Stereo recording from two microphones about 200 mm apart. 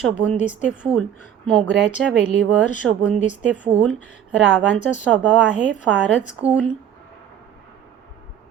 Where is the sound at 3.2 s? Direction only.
35° left (ahead or behind).